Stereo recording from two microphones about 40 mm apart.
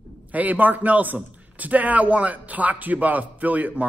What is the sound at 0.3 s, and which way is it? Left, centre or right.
A man's voice, right.